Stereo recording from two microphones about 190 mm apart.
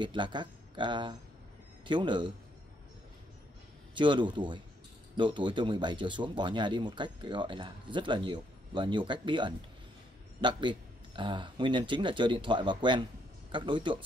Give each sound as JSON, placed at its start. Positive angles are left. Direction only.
{"t": 0.0, "sound": "speech", "side_deg": -25}
{"t": 3.9, "sound": "speech", "side_deg": -25}